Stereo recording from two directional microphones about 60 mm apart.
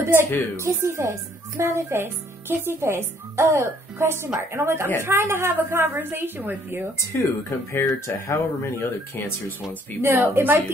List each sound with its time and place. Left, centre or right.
0.0 s a woman's voice: right
7.1 s speech: left
7.8 s speech: left
10.0 s a woman's voice: right